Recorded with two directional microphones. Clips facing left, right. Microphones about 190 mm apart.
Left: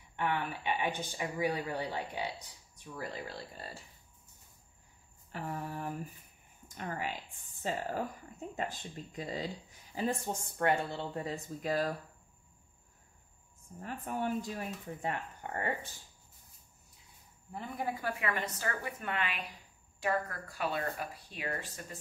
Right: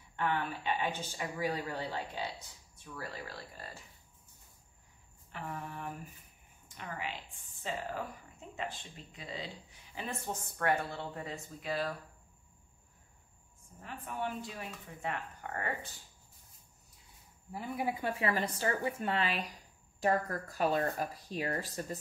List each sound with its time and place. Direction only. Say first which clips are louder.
0.1 s speech: even; 15° left (ahead or behind)
5.3 s speech: left 3 dB; 35° left (ahead or behind)
13.7 s speech: left 3 dB; 40° left (ahead or behind)
17.5 s speech: right 2 dB; 5° right (ahead or behind)
18.0 s speech: right 3 dB; 30° right (ahead or behind)